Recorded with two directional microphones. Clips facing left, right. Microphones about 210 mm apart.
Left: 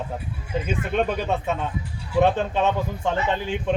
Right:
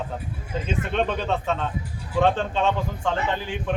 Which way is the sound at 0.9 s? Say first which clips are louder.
Left 2 dB; 10° left (ahead or behind).